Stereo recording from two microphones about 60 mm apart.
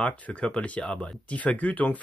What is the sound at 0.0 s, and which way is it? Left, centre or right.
Speech, centre.